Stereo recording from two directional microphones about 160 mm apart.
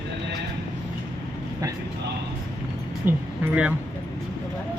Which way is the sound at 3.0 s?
10° right (ahead or behind).